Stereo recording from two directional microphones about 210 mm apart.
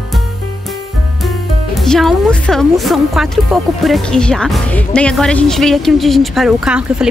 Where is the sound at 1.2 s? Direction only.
Centre (ahead or behind).